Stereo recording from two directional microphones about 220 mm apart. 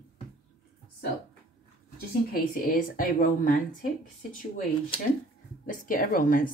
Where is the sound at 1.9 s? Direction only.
40° left (ahead or behind).